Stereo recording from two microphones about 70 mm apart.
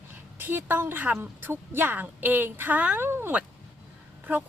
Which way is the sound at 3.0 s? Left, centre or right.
Right.